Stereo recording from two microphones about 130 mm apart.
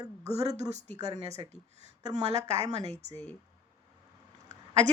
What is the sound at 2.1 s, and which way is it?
Speech, 60° right (ahead or behind).